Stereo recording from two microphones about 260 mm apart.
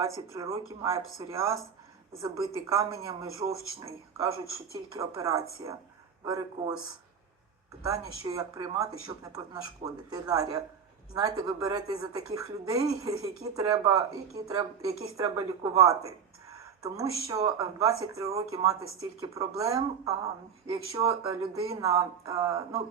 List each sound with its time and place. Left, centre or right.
0.3 s speech: centre
7.9 s speech: centre